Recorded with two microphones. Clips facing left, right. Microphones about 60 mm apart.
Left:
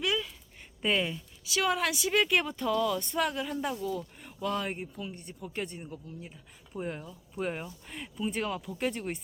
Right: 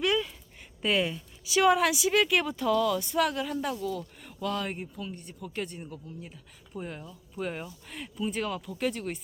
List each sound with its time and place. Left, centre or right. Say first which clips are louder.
0.0 s a sound: right 4 dB; centre
0.8 s speech: right 2 dB; centre
3.0 s speech: right 3 dB; centre
3.2 s speech: right 2 dB; centre
5.9 s speech: right 1 dB; centre
7.5 s speech: even; centre